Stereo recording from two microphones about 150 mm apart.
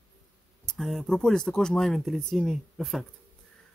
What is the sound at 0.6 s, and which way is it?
Speech, 5° left (ahead or behind).